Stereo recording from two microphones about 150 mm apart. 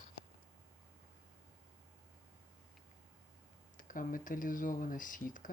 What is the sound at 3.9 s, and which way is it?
Speech, 65° left (ahead or behind).